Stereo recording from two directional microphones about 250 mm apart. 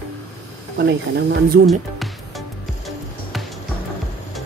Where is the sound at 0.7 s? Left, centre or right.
Right.